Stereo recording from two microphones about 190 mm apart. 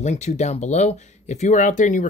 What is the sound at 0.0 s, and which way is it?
Speech, 35° left (ahead or behind).